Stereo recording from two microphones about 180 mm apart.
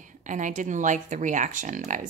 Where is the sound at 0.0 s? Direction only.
45° right (ahead or behind).